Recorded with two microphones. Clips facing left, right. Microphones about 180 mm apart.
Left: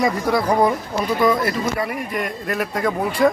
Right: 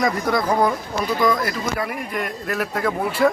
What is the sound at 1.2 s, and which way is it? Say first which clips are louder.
Speech: left 2 dB; 25° left (ahead or behind).